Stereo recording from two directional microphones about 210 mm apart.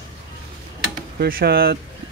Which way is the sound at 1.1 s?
45° right (ahead or behind).